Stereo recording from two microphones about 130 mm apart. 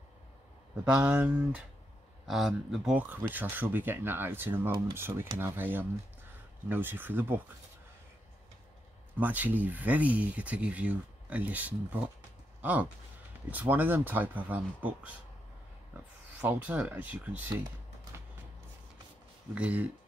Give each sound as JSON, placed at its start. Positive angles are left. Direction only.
{"t": 0.9, "sound": "speech", "side_deg": -10}
{"t": 9.2, "sound": "speech", "side_deg": -10}
{"t": 13.5, "sound": "speech", "side_deg": -15}
{"t": 16.3, "sound": "speech", "side_deg": -10}
{"t": 19.5, "sound": "speech", "side_deg": -10}